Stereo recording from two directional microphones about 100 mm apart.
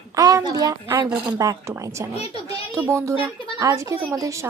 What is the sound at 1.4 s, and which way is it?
Speech, 35° right (ahead or behind).